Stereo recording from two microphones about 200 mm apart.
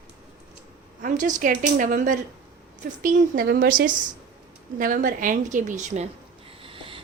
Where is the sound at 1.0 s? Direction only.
40° right (ahead or behind).